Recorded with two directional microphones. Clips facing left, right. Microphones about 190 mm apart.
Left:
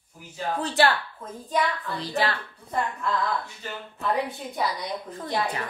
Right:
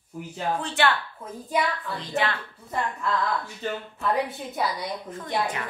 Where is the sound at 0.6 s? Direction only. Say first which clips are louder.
Left 3 dB; 35° left (ahead or behind).